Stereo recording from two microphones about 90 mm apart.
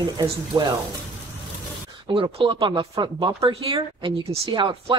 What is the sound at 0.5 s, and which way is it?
Speech, 40° right (ahead or behind).